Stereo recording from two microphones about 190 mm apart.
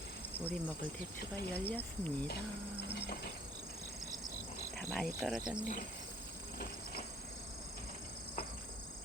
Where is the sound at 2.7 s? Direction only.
60° left (ahead or behind).